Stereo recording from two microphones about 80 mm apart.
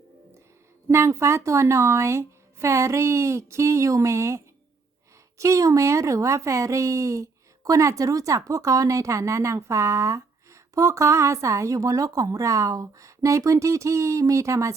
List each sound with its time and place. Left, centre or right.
0.9 s speech: right